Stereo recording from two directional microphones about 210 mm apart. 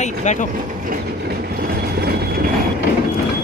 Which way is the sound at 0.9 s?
45° right (ahead or behind).